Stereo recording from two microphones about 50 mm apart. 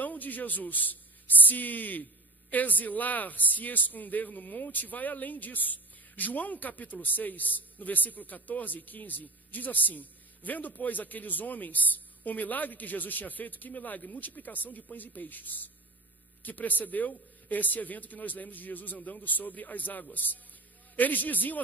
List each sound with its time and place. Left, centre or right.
0.0 s a man's voice: left